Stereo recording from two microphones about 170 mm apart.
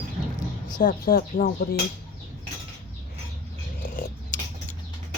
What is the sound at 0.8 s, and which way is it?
Speech, 55° left (ahead or behind).